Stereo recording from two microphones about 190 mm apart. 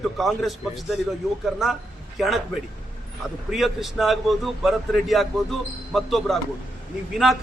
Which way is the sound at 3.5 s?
Centre (ahead or behind).